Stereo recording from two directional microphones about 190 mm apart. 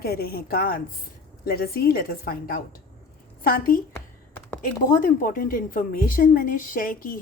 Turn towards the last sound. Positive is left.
turn(degrees=50)  # may be behind; listen again after turning